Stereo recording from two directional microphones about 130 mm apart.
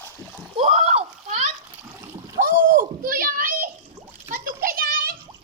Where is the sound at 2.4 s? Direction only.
90° right.